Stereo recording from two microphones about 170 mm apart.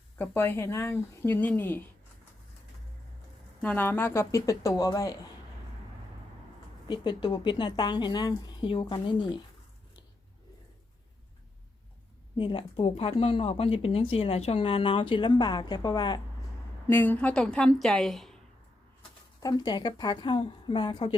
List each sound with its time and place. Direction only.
0.2 s speech: 10° left (ahead or behind)
3.6 s speech: 10° left (ahead or behind)
6.8 s a woman's voice: 25° left (ahead or behind)
12.4 s speech: 30° left (ahead or behind)
16.9 s a woman's voice: 10° left (ahead or behind)
19.4 s a woman's voice: 25° left (ahead or behind)